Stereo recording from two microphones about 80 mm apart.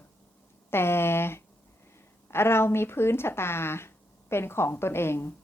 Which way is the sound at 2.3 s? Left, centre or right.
Left.